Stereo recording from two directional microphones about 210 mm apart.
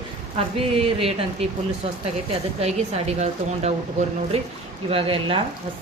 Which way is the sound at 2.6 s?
30° right (ahead or behind).